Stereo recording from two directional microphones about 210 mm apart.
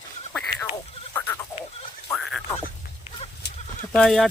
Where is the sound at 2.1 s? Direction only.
Centre (ahead or behind).